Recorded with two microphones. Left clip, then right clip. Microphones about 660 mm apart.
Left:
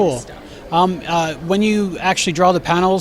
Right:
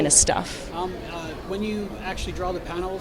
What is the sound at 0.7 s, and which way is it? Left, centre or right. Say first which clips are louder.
A man's voice: left 17 dB; left.